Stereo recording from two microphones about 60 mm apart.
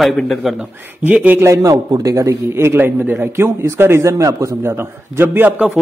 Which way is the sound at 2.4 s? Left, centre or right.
Right.